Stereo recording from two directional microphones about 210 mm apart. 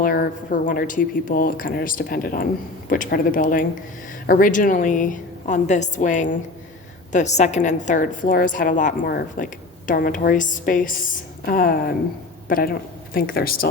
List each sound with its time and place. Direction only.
0.0 s a woman's voice: 40° left (ahead or behind)